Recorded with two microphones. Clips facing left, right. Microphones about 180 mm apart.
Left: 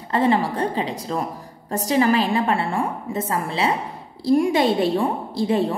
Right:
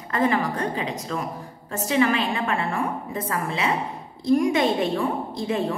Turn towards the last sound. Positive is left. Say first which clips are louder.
# left 4 dB
turn(degrees=30)  # may be behind; listen again after turning